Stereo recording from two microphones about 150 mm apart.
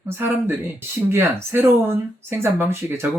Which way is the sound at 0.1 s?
15° right (ahead or behind).